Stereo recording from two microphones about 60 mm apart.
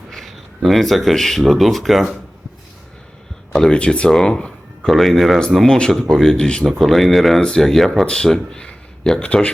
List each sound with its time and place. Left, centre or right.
0.1 s speech: centre
3.5 s speech: centre
6.3 s speech: centre
6.7 s speech: centre